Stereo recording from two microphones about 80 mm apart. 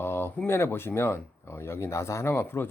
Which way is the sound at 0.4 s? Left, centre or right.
Left.